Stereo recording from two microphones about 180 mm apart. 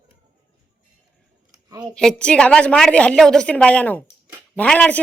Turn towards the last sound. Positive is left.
turn(degrees=5)  # may be behind; listen again after turning